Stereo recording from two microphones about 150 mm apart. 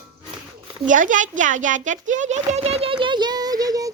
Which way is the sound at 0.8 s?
60° right (ahead or behind).